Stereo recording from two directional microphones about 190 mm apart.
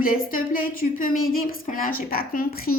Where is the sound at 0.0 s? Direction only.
50° left (ahead or behind).